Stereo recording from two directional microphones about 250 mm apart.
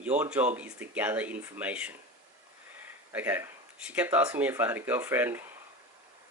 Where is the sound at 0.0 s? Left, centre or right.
Centre.